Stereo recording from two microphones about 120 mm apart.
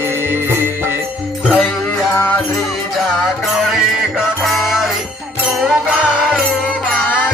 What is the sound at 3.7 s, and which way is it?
Music, centre (ahead or behind).